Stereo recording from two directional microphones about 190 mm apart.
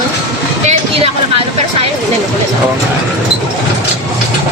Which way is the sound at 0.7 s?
30° right (ahead or behind).